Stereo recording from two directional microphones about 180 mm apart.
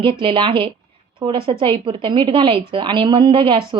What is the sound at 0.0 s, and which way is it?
Speech, 30° right (ahead or behind).